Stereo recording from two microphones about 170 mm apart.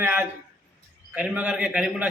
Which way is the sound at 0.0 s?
10° right (ahead or behind).